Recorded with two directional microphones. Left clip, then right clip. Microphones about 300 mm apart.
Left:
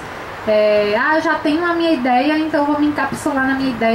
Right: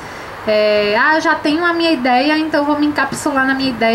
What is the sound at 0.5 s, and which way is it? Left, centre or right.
A woman's voice, centre.